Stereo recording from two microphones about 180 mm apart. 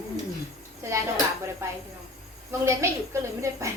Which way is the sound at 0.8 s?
15° right (ahead or behind).